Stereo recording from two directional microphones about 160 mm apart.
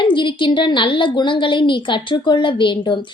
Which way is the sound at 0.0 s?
30° left (ahead or behind).